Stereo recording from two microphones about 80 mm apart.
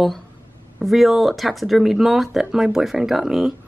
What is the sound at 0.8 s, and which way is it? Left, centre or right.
A woman's voice, centre.